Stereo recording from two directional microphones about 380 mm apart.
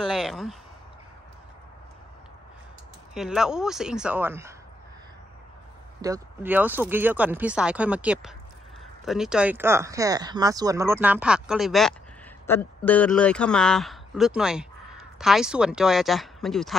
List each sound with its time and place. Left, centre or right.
0.0 s speech: centre
3.2 s speech: centre
5.9 s speech: centre